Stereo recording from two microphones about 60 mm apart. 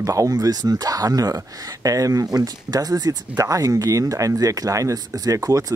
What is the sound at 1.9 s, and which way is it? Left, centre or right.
Speech, right.